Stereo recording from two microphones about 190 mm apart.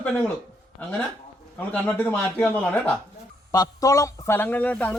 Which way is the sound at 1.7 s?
10° left (ahead or behind).